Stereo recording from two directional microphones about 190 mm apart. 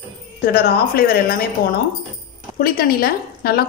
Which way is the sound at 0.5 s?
55° left (ahead or behind).